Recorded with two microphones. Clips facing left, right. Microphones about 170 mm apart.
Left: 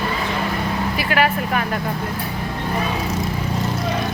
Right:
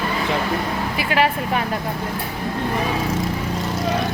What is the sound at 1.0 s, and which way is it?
Speech, 25° right (ahead or behind).